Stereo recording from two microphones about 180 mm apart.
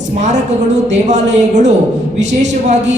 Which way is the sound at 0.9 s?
40° right (ahead or behind).